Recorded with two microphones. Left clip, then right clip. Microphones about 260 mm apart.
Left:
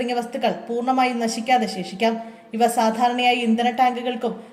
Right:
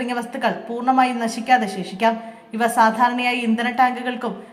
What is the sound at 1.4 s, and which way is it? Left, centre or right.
Speech, right.